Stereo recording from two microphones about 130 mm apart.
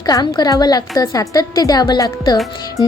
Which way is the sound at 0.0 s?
30° left (ahead or behind).